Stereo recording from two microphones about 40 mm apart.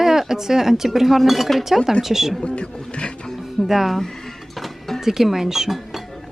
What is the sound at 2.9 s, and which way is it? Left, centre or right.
Music, left.